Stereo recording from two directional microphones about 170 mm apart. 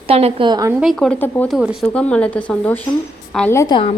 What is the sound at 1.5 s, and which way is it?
Speech, centre (ahead or behind).